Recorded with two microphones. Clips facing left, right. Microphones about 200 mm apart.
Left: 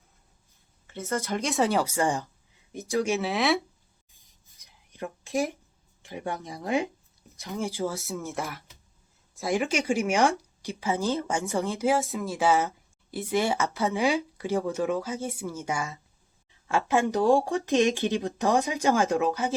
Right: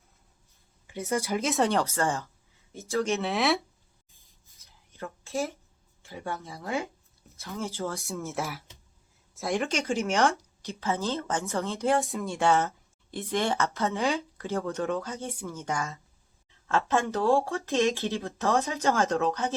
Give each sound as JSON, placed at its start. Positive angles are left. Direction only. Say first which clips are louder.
{"t": 0.9, "sound": "speech", "louder": "right 1 dB", "side_deg": -15}
{"t": 3.2, "sound": "speech", "louder": "left 1 dB", "side_deg": 0}
{"t": 4.5, "sound": "a sound", "louder": "left 5 dB", "side_deg": 15}
{"t": 6.0, "sound": "speech", "louder": "left 3 dB", "side_deg": 15}
{"t": 7.9, "sound": "speech", "louder": "even", "side_deg": 0}
{"t": 9.7, "sound": "speech", "louder": "left 3 dB", "side_deg": 10}
{"t": 11.9, "sound": "speech", "louder": "right 1 dB", "side_deg": 0}
{"t": 12.6, "sound": "a sound", "louder": "left 1 dB", "side_deg": 5}
{"t": 13.3, "sound": "speech", "louder": "left 2 dB", "side_deg": 10}